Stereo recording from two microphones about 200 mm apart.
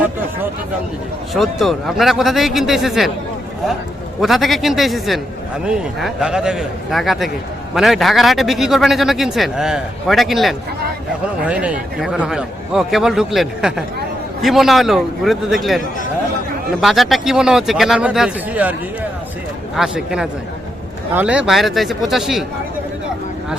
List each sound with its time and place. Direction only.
1.3 s a man's voice: centre (ahead or behind)
4.2 s a man's voice: centre (ahead or behind)
16.8 s a man's voice: centre (ahead or behind)
19.7 s a man's voice: 5° right (ahead or behind)